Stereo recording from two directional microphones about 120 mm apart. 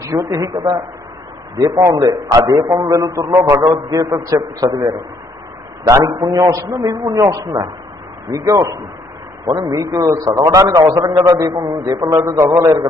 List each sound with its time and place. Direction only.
0.0 s a man's voice: 25° right (ahead or behind)
1.9 s a man's voice: 30° right (ahead or behind)